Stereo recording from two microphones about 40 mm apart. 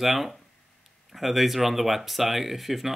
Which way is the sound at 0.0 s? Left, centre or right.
Centre.